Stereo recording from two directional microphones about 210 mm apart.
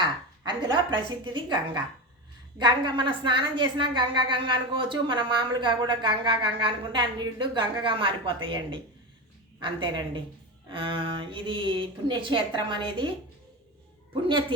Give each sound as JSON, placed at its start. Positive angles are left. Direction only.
{"t": 0.0, "sound": "a woman's voice", "side_deg": -20}